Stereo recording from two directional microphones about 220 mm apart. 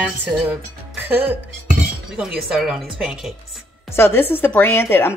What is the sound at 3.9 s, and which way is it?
A woman's voice, 10° left (ahead or behind).